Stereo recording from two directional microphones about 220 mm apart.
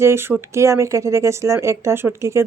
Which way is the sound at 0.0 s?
10° right (ahead or behind).